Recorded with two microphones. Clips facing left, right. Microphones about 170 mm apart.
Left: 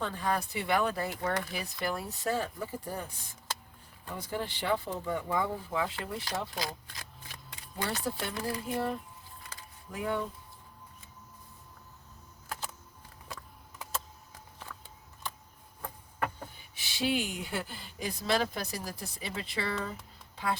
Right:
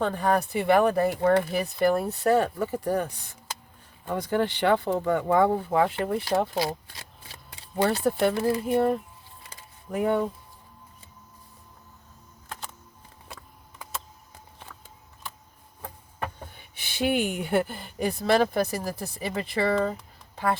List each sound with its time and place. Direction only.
0.0 s speech: 60° right (ahead or behind)
6.6 s shuffling cards: 25° right (ahead or behind)
8.0 s speech: 60° right (ahead or behind)
8.4 s speech: 25° right (ahead or behind)
8.6 s speech: 55° right (ahead or behind)
12.5 s music: 5° left (ahead or behind)
16.7 s speech: 60° right (ahead or behind)